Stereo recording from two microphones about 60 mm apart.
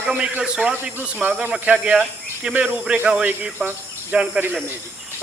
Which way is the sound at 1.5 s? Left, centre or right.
Centre.